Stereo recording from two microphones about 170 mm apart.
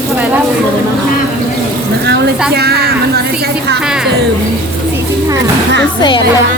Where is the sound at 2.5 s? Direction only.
70° right (ahead or behind).